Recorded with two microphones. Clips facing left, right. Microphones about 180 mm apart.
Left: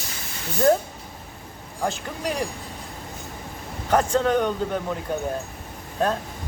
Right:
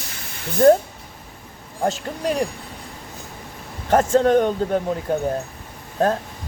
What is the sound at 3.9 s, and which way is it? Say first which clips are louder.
Speech: right 5 dB; 45° right (ahead or behind).